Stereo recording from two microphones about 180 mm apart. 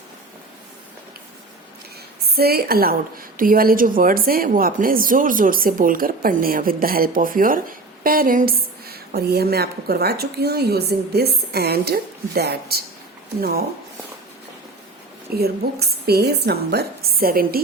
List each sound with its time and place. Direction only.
2.3 s a woman's voice: 60° right (ahead or behind)
15.4 s a woman's voice: 60° right (ahead or behind)